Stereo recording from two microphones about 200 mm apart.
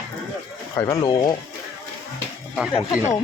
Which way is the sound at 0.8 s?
15° left (ahead or behind).